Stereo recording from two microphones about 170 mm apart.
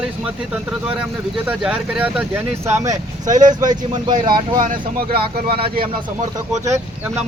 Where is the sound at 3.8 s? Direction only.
25° right (ahead or behind).